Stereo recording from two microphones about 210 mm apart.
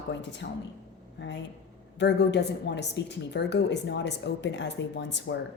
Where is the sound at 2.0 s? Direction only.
55° left (ahead or behind).